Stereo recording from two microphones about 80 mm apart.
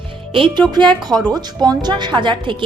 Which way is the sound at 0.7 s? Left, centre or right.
Right.